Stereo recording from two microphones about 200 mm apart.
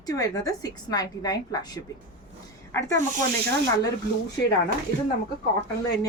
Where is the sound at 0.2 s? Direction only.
15° left (ahead or behind).